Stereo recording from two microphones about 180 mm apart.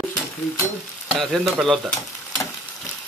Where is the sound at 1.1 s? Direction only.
Centre (ahead or behind).